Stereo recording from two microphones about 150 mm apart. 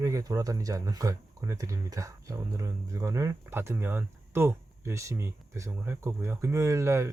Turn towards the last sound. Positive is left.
turn(degrees=-20)  # may be behind; listen again after turning